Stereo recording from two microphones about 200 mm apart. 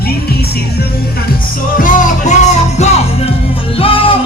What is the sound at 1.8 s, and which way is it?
Music, 40° left (ahead or behind).